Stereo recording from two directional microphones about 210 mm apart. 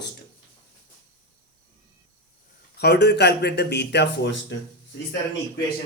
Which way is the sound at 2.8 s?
50° left (ahead or behind).